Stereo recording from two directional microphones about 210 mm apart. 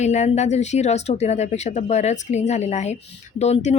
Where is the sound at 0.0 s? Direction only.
35° left (ahead or behind).